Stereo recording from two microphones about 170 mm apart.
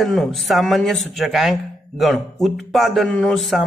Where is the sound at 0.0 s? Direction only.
Centre (ahead or behind).